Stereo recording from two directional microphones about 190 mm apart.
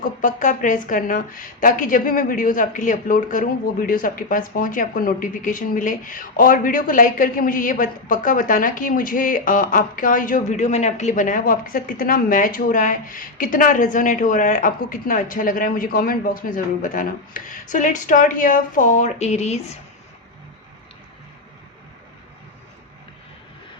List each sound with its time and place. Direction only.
0.0 s a woman's voice: 45° left (ahead or behind)